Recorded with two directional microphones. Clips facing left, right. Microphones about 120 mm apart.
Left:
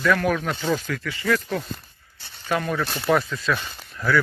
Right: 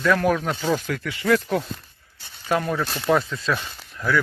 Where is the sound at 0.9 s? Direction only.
25° right (ahead or behind).